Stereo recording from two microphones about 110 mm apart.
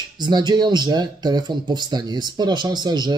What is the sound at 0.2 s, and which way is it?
Speech, 40° right (ahead or behind).